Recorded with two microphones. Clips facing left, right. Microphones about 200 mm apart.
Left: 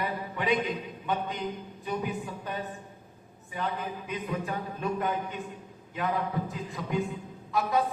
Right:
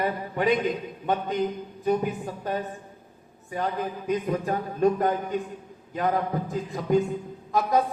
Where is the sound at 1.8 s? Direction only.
45° right (ahead or behind).